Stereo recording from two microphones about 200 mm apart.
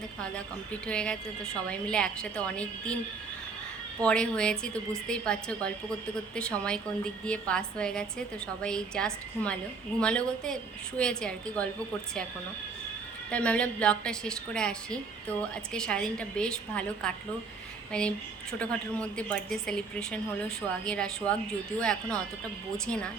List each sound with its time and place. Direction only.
0.2 s a woman's voice: 5° left (ahead or behind)
4.0 s a woman's voice: 5° left (ahead or behind)
13.3 s a woman's voice: 5° left (ahead or behind)